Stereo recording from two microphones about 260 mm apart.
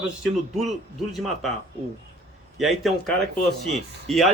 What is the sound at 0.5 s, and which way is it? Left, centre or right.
Speech, centre.